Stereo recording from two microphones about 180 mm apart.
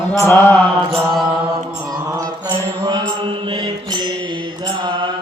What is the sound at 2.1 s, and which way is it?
Mantra, 25° right (ahead or behind).